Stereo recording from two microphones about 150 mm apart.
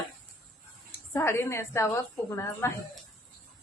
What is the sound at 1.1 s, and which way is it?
A woman's voice, 15° left (ahead or behind).